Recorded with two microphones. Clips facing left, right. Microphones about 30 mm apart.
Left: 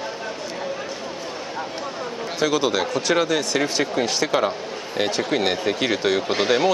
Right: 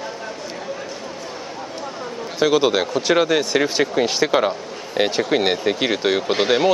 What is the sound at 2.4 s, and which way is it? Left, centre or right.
Speech, centre.